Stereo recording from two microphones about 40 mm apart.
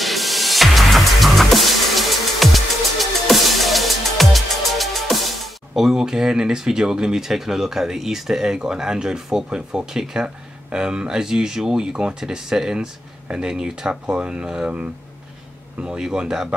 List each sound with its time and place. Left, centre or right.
0.0 s music: centre; by 14.7 s right
16.0 s speech: centre